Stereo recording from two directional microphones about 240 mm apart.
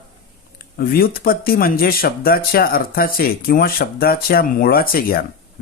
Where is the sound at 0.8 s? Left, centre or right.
Left.